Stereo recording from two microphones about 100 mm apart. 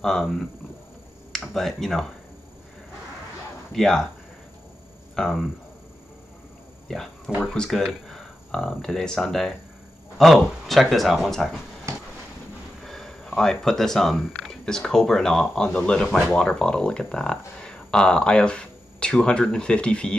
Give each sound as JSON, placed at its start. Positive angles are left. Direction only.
{"t": 0.0, "sound": "speech", "side_deg": 5}
{"t": 3.7, "sound": "speech", "side_deg": 5}
{"t": 5.1, "sound": "speech", "side_deg": 5}
{"t": 7.4, "sound": "speech", "side_deg": 5}
{"t": 11.9, "sound": "a sound", "side_deg": -30}
{"t": 12.8, "sound": "speech", "side_deg": 5}